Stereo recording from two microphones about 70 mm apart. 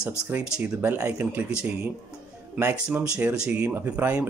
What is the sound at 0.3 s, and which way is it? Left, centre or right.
Speech, right.